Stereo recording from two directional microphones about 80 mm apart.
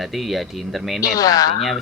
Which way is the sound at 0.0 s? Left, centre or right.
Centre.